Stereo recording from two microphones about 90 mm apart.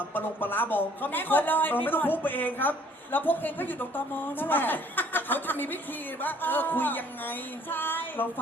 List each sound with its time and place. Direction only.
0.1 s a man's voice: 20° left (ahead or behind)